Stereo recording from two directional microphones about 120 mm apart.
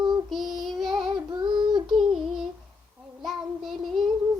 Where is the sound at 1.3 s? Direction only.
35° right (ahead or behind).